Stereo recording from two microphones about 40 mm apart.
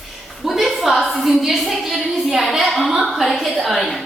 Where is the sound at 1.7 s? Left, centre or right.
Centre.